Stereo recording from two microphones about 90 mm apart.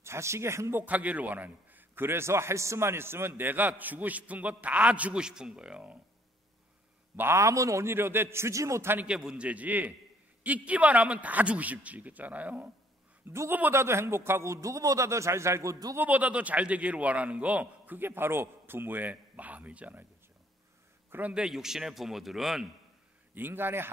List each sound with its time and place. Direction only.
0.0 s a man's voice: 30° right (ahead or behind); by 5.9 s 10° right (ahead or behind)
7.2 s a man's voice: 30° right (ahead or behind)
9.0 s a man's voice: 10° right (ahead or behind)
13.3 s a man's voice: 30° right (ahead or behind)
16.0 s a man's voice: 15° right (ahead or behind)
21.3 s a man's voice: 5° right (ahead or behind)
23.3 s a man's voice: 25° right (ahead or behind)